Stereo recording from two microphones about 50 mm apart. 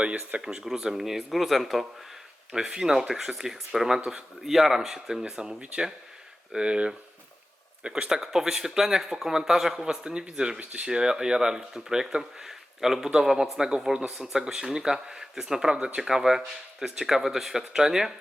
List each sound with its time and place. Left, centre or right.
0.4 s speech: centre
15.7 s speech: right